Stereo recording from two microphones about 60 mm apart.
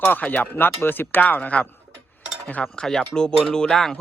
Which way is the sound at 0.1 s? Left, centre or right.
Left.